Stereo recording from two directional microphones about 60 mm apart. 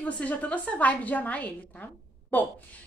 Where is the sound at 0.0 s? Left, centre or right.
Left.